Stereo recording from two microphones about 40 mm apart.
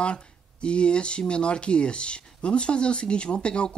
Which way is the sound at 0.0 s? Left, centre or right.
Left.